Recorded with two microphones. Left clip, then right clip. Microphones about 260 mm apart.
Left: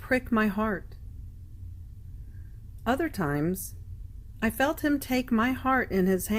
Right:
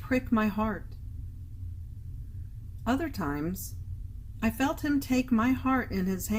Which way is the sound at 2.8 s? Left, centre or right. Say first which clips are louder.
Left 3 dB; left.